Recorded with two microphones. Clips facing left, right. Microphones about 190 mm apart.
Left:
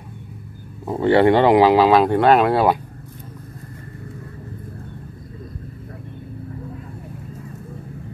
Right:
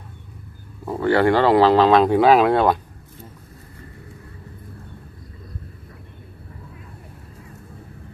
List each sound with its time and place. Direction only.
0.8 s speech: 20° left (ahead or behind); by 2.8 s 5° left (ahead or behind)